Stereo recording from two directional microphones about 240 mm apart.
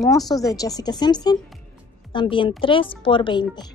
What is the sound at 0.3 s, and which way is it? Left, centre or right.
A woman's voice, centre.